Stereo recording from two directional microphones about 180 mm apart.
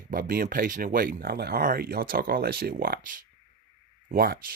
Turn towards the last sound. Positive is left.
turn(degrees=-60)  # may be behind; listen again after turning